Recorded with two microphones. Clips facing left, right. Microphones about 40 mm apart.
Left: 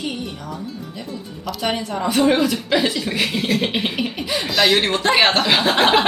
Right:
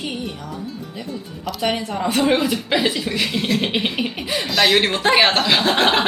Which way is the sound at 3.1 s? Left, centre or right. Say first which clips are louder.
Left 1 dB; centre.